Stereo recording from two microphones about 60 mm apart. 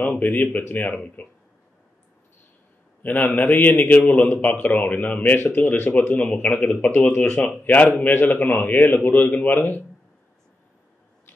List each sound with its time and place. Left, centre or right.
0.0 s speech: left
3.0 s a man's voice: left
4.1 s speech: left
6.8 s speech: left
7.4 s a man's voice: left